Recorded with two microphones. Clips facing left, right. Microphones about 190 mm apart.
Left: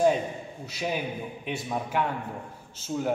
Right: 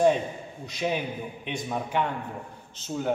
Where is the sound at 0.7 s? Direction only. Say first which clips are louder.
Right 2 dB; 5° left (ahead or behind).